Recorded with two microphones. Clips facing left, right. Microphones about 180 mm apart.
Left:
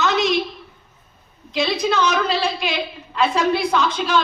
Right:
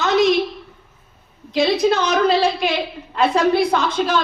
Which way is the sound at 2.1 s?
50° right (ahead or behind).